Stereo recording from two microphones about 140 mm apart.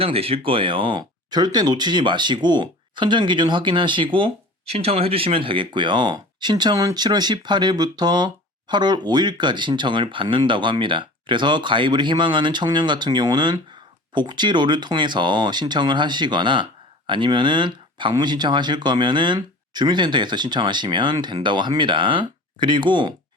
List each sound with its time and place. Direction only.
0.0 s speech: 45° right (ahead or behind)